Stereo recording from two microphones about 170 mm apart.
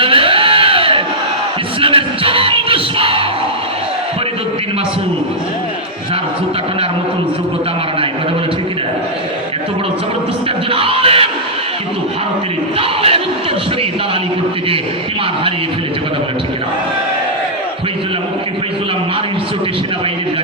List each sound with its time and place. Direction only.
0.0 s sheep: 30° right (ahead or behind)
1.8 s music: 30° right (ahead or behind)
10.7 s music: 35° right (ahead or behind)
12.8 s crowd: 35° right (ahead or behind)